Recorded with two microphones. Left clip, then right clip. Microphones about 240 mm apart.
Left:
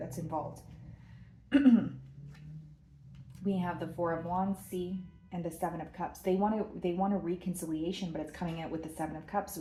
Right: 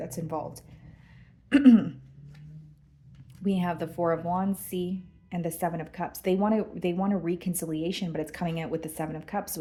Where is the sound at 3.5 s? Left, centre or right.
Right.